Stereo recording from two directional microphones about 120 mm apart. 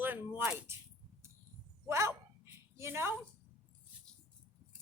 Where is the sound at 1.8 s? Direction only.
25° right (ahead or behind).